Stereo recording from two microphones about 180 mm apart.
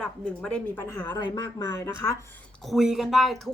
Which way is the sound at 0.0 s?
5° left (ahead or behind).